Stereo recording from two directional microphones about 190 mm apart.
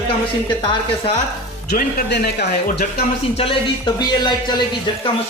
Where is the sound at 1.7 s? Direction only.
55° left (ahead or behind).